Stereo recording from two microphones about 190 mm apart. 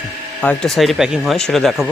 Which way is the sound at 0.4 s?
Centre (ahead or behind).